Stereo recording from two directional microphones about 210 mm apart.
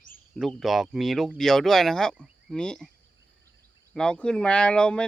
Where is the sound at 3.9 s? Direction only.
5° left (ahead or behind).